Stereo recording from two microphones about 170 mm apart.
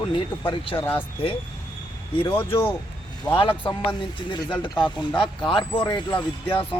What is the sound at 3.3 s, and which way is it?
Speech, 30° left (ahead or behind).